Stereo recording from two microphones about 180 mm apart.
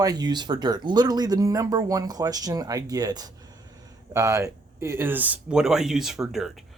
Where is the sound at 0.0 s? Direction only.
20° right (ahead or behind); by 6.5 s centre (ahead or behind).